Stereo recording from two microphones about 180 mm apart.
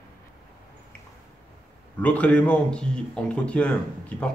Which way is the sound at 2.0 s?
10° left (ahead or behind).